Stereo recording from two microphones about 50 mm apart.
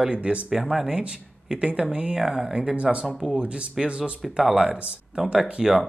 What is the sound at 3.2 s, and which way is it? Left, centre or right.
Speech, centre.